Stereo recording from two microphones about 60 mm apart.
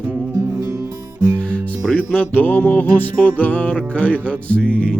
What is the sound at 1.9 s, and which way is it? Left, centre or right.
Music, left.